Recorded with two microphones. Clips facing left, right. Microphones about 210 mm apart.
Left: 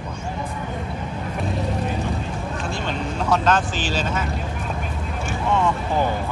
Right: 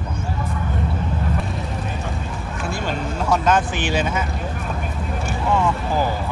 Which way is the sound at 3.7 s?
60° right (ahead or behind).